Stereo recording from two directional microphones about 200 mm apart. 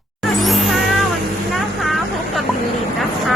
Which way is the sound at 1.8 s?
Centre (ahead or behind).